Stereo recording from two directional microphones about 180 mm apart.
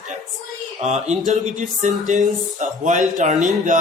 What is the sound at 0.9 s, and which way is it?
Speech, 40° right (ahead or behind).